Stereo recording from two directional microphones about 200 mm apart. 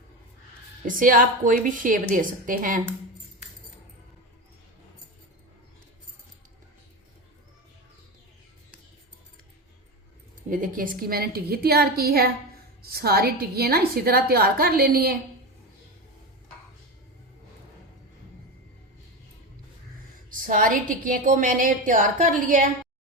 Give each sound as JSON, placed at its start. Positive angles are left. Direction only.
{"t": 0.9, "sound": "a woman's voice", "side_deg": -45}
{"t": 10.5, "sound": "a woman's voice", "side_deg": -45}
{"t": 20.4, "sound": "a woman's voice", "side_deg": -45}